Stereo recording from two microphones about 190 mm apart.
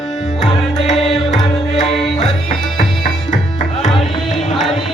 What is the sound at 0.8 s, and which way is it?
Music, 30° left (ahead or behind).